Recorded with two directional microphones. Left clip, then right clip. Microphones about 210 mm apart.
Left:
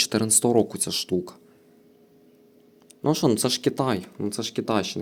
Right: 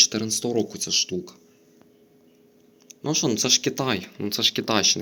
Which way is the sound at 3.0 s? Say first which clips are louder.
Left 2 dB; 25° left (ahead or behind).